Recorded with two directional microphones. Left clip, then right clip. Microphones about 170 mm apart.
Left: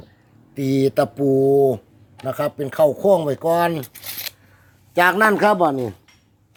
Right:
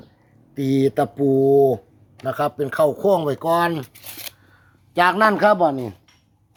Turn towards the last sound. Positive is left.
turn(degrees=0)  # may be behind; listen again after turning